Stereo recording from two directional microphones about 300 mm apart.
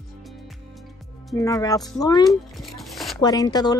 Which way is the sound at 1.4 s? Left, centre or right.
Centre.